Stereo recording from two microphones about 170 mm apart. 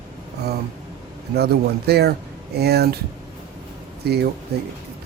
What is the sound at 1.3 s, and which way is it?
Speech, 70° right (ahead or behind).